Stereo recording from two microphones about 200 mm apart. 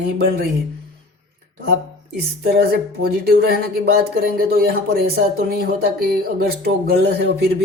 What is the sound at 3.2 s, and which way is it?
Speech, 50° right (ahead or behind).